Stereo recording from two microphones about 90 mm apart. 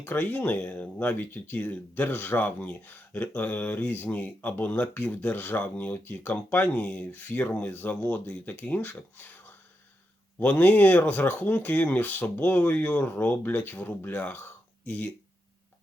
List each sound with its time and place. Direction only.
0.0 s speech: 20° left (ahead or behind)